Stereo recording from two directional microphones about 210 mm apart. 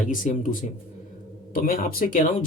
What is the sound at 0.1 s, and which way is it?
Speech, 40° left (ahead or behind).